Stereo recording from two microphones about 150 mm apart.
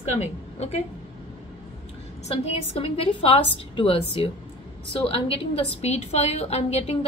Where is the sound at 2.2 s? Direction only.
45° left (ahead or behind).